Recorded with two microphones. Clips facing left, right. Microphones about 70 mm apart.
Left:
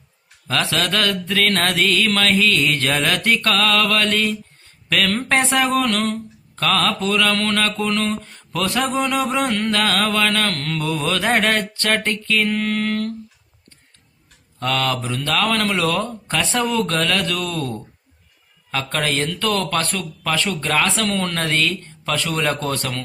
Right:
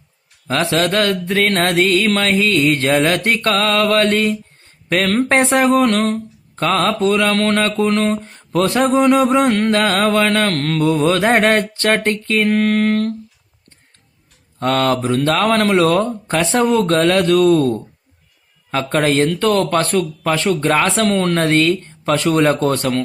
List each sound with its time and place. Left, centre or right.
0.4 s speech: right
14.6 s speech: right